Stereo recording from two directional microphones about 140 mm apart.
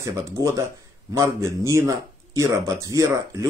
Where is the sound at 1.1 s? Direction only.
20° right (ahead or behind).